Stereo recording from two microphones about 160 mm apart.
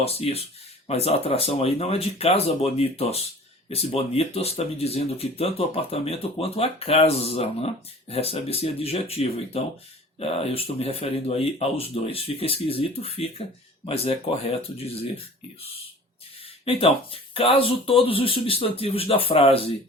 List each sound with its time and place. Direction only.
0.0 s speech: 40° left (ahead or behind)
16.6 s speech: 35° left (ahead or behind)